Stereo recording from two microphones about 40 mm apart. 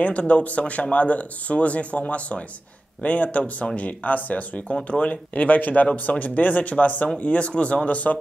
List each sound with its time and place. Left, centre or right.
0.0 s speech: left